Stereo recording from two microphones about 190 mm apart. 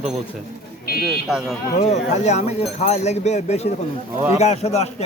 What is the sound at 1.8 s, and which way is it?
Speech, 35° left (ahead or behind).